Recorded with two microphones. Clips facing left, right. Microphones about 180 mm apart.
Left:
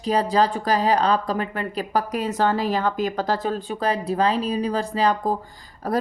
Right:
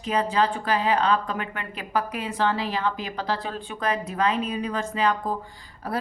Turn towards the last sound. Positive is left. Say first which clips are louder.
# left 6 dB
turn(degrees=40)  # may be behind; listen again after turning